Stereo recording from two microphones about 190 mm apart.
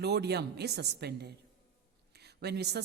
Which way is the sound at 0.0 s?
60° right (ahead or behind).